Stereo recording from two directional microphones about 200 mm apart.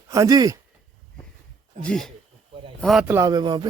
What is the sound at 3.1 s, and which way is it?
Speech, 20° right (ahead or behind).